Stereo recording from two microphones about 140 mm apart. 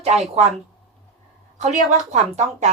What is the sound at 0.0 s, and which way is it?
Speech, 50° right (ahead or behind).